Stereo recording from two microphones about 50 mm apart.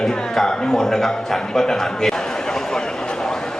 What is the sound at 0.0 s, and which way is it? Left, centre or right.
A man's voice, centre.